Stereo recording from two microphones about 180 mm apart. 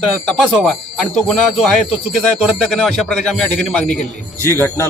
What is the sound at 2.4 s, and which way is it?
Speech, centre (ahead or behind).